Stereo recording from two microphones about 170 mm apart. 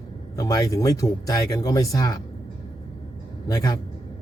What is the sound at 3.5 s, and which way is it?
Speech, 20° left (ahead or behind).